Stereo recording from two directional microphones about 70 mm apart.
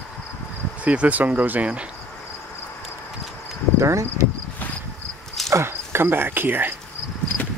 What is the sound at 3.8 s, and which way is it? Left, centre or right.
Speech, right.